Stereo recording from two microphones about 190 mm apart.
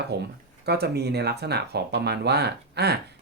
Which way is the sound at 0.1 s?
60° right (ahead or behind).